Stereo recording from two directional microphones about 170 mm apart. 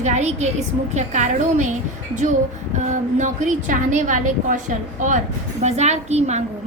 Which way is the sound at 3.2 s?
45° right (ahead or behind).